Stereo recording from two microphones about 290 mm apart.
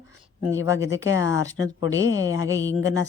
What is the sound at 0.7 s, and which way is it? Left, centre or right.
A man's voice, centre.